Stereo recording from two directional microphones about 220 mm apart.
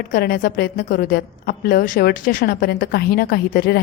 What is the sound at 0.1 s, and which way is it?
A woman's voice, 40° left (ahead or behind).